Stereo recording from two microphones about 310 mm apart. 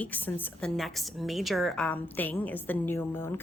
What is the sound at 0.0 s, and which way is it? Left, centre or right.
A woman's voice, centre.